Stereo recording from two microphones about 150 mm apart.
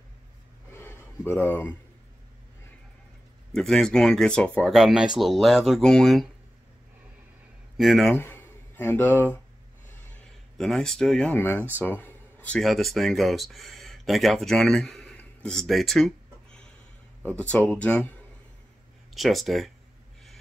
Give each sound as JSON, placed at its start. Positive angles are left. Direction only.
{"t": 0.7, "sound": "a sound", "side_deg": 15}
{"t": 3.5, "sound": "speech", "side_deg": 5}
{"t": 7.7, "sound": "speech", "side_deg": 0}
{"t": 8.2, "sound": "speech", "side_deg": 15}
{"t": 17.3, "sound": "speech", "side_deg": 10}
{"t": 19.1, "sound": "speech", "side_deg": 0}